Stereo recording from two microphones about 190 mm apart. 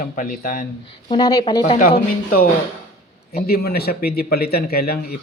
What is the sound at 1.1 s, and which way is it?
Speech, 20° left (ahead or behind).